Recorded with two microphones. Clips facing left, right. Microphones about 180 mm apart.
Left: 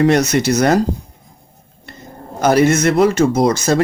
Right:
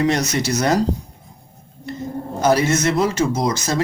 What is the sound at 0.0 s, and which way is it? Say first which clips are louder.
Speech: left 6 dB; 60° left (ahead or behind).